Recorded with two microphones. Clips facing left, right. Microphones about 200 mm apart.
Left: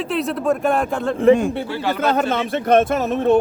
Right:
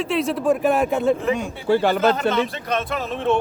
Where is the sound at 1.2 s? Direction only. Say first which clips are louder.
Left 9 dB; 55° left (ahead or behind).